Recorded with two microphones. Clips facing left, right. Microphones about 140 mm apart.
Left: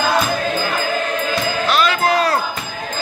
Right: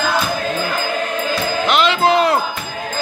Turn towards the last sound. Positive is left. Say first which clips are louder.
# right 2 dB
turn(degrees=-25)  # may be behind; listen again after turning